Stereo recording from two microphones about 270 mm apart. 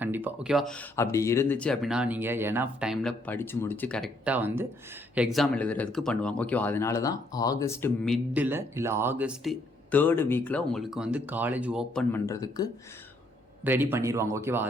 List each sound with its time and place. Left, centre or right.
0.0 s speech: centre
13.7 s speech: centre